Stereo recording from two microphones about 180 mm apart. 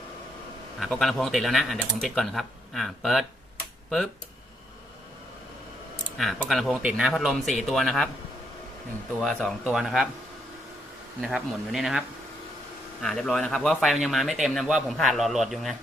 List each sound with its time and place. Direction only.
0.8 s speech: centre (ahead or behind)
6.1 s speech: centre (ahead or behind)
9.2 s speech: centre (ahead or behind)
11.2 s speech: centre (ahead or behind)